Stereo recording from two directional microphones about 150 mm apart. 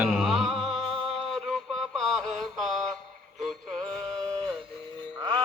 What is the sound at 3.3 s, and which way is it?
Synthetic singing, centre (ahead or behind).